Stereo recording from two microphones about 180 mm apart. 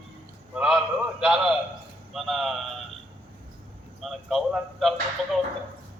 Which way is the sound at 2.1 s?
Centre (ahead or behind).